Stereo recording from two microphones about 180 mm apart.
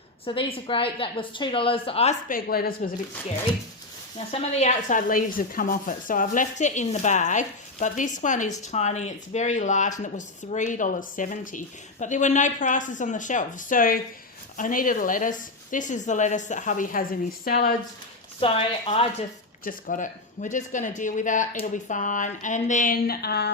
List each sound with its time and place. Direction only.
0.3 s a woman's voice: 30° left (ahead or behind)
2.2 s speech: 55° left (ahead or behind)
4.3 s speech: 40° left (ahead or behind); by 17.7 s 55° left (ahead or behind)
18.3 s a woman's voice: 30° left (ahead or behind)
19.6 s speech: 45° left (ahead or behind); by 23.5 s 60° left (ahead or behind)